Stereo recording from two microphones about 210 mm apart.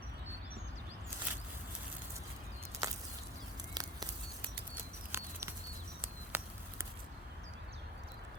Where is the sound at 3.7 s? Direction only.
20° right (ahead or behind).